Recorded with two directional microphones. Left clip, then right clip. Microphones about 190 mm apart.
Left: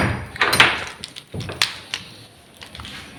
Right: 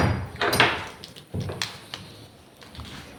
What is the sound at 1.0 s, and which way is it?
Tap, 10° right (ahead or behind).